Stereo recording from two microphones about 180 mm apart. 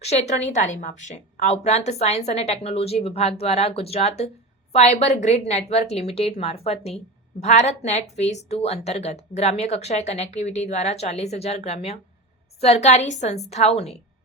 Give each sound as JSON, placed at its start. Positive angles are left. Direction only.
{"t": 0.0, "sound": "a woman's voice", "side_deg": 35}